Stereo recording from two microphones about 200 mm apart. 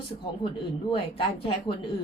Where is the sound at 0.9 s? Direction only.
30° left (ahead or behind).